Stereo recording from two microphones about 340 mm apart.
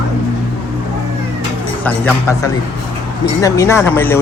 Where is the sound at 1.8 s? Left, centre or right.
Centre.